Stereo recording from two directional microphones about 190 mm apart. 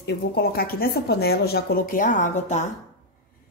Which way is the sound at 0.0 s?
55° left (ahead or behind).